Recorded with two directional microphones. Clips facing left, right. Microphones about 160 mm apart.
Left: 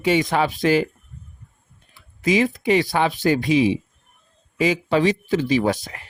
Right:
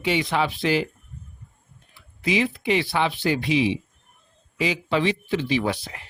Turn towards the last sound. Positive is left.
turn(degrees=45)  # may be behind; listen again after turning